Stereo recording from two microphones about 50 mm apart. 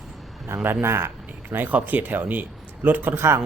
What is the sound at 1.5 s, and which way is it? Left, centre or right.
Speech, right.